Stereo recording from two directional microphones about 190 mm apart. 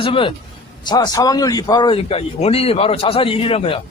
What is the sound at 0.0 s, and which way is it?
A man's voice, 25° left (ahead or behind).